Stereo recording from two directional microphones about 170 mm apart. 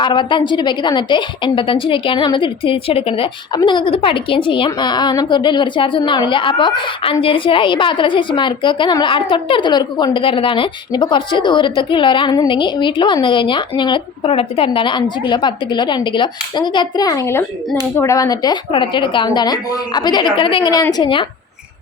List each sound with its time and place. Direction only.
0.0 s a woman's voice: 25° left (ahead or behind)